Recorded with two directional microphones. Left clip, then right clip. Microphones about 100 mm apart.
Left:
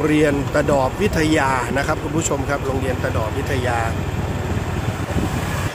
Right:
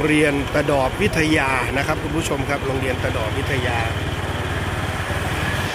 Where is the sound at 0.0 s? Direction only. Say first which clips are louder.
Even; 15° left (ahead or behind).